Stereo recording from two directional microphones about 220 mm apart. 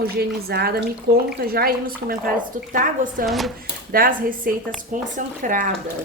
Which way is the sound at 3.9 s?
40° right (ahead or behind).